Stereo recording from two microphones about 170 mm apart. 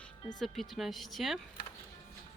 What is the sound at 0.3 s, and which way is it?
Speech, centre (ahead or behind).